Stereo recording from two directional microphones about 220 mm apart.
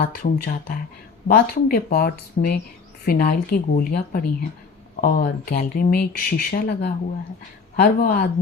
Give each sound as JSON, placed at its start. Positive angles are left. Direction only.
{"t": 0.0, "sound": "speech", "side_deg": 45}